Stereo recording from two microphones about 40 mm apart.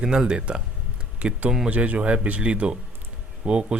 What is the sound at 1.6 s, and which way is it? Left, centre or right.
Speech, right.